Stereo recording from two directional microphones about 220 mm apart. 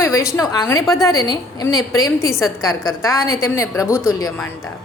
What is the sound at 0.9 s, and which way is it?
Speech, centre (ahead or behind).